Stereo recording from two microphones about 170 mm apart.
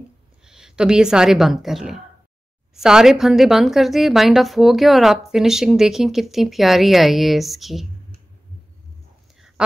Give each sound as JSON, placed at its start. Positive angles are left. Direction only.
{"t": 0.5, "sound": "a woman's voice", "side_deg": -5}